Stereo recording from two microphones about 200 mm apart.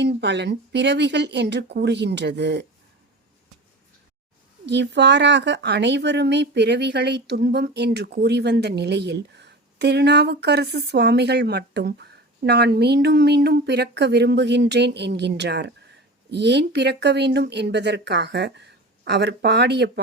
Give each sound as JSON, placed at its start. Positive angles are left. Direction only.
{"t": 0.0, "sound": "speech", "side_deg": -60}
{"t": 4.6, "sound": "speech", "side_deg": -60}